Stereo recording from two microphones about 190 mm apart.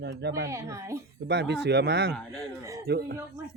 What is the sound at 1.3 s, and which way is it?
Speech, 65° right (ahead or behind).